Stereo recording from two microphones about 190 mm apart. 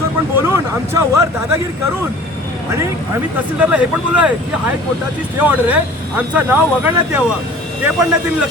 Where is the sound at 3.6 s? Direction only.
5° right (ahead or behind).